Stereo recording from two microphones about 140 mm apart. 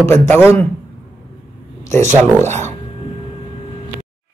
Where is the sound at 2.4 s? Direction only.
55° right (ahead or behind).